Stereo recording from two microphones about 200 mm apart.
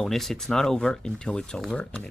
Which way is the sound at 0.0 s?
Centre (ahead or behind).